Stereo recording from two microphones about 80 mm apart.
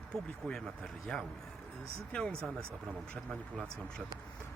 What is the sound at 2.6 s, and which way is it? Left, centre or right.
Speech, right.